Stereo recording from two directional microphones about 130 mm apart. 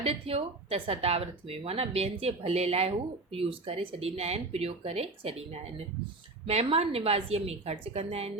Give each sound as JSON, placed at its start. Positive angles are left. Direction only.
{"t": 0.0, "sound": "speech", "side_deg": -50}